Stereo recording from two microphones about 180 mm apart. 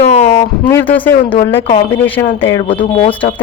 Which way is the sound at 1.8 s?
10° left (ahead or behind).